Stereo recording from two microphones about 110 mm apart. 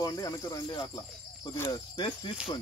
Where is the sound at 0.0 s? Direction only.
30° left (ahead or behind).